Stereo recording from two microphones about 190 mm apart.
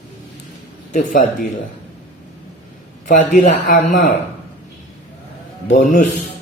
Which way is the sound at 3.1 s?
45° left (ahead or behind).